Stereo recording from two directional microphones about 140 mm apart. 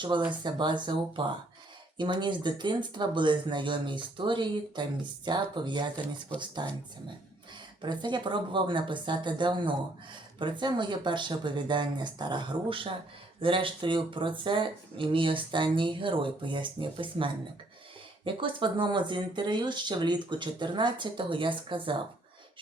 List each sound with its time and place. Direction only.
0.3 s speech: 35° right (ahead or behind)
7.8 s speech: 35° right (ahead or behind)